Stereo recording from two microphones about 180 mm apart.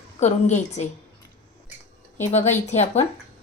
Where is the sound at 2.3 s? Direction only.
40° left (ahead or behind).